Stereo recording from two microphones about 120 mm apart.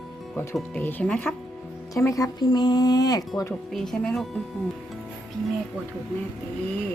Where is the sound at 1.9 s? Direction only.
25° left (ahead or behind).